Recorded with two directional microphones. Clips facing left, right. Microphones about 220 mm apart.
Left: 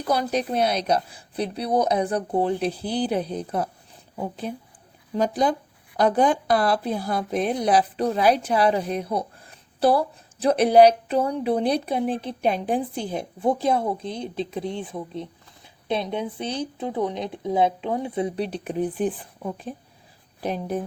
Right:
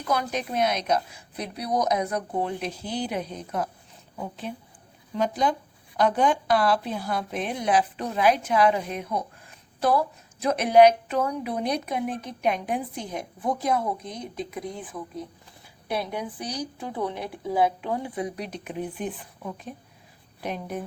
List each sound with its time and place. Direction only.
0.0 s a woman's voice: 35° left (ahead or behind)